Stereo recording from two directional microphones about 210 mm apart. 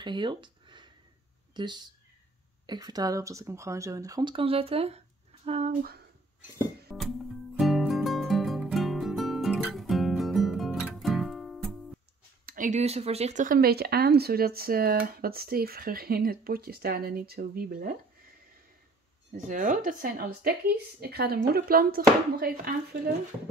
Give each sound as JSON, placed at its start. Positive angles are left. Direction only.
{"t": 0.0, "sound": "a sound", "side_deg": -20}
{"t": 1.5, "sound": "speech", "side_deg": -20}
{"t": 6.9, "sound": "music", "side_deg": 0}
{"t": 12.4, "sound": "speech", "side_deg": -40}
{"t": 19.3, "sound": "speech", "side_deg": -35}